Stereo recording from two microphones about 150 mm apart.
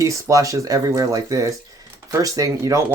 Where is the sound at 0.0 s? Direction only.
20° right (ahead or behind).